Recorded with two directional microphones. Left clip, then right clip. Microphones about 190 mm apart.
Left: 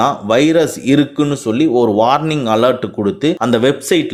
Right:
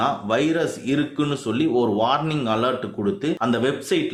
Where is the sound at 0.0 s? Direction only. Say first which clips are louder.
Left 9 dB; 40° left (ahead or behind).